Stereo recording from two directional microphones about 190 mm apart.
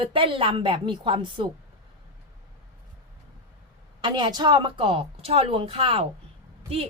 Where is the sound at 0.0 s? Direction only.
25° right (ahead or behind).